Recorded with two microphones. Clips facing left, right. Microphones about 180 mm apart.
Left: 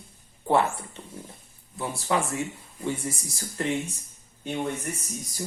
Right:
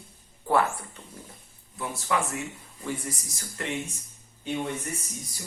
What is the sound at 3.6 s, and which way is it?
Speech, 35° left (ahead or behind).